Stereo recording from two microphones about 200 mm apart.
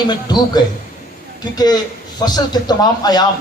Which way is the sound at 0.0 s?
20° left (ahead or behind).